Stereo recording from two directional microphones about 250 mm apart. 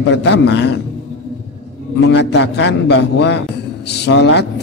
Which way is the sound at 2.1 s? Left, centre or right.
Left.